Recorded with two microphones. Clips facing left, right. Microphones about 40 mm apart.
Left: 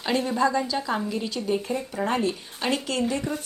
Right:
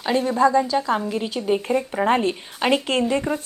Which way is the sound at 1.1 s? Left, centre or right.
Right.